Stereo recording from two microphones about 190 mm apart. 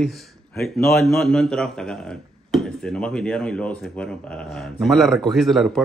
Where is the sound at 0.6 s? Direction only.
15° left (ahead or behind).